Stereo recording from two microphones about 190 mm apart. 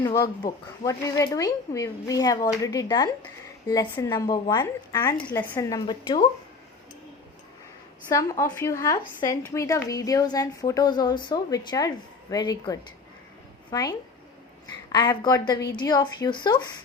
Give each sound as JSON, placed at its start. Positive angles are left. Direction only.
{"t": 0.0, "sound": "speech", "side_deg": 20}
{"t": 8.1, "sound": "a woman's voice", "side_deg": 15}
{"t": 15.2, "sound": "speech", "side_deg": 20}